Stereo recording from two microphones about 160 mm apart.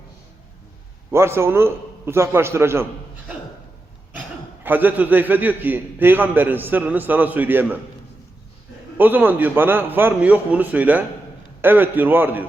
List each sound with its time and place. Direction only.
1.1 s a man's voice: 15° right (ahead or behind)
4.6 s a man's voice: 10° right (ahead or behind)
9.0 s a man's voice: 10° right (ahead or behind)